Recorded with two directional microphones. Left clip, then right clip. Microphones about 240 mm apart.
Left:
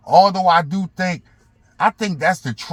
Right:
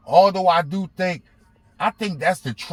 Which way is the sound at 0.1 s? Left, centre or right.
Left.